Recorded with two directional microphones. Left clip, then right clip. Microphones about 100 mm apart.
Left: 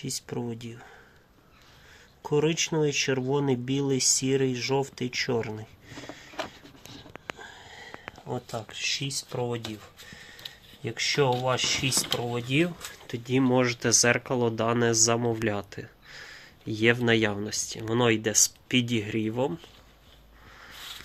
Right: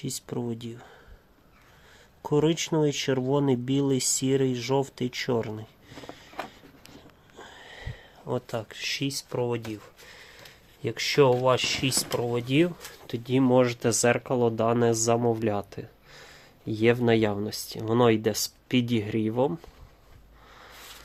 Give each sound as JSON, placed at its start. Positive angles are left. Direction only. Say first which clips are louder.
{"t": 0.0, "sound": "speech", "louder": "even", "side_deg": -25}
{"t": 2.2, "sound": "speech", "louder": "right 1 dB", "side_deg": -30}
{"t": 7.7, "sound": "a sound", "louder": "left 2 dB", "side_deg": -20}
{"t": 9.3, "sound": "speech", "louder": "right 3 dB", "side_deg": -10}
{"t": 10.8, "sound": "speech", "louder": "right 3 dB", "side_deg": -30}